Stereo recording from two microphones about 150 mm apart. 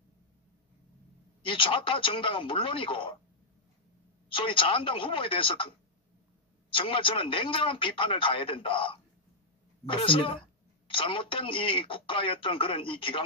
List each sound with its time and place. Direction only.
1.4 s a man's voice: 35° left (ahead or behind)
4.3 s a man's voice: 35° left (ahead or behind)